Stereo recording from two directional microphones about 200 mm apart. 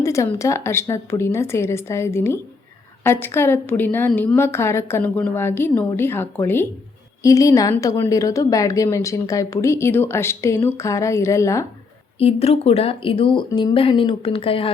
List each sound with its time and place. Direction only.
0.0 s a woman's voice: 15° left (ahead or behind)
12.2 s speech: 30° left (ahead or behind)